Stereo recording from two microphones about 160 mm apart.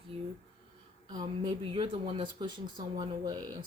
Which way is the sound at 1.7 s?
35° right (ahead or behind).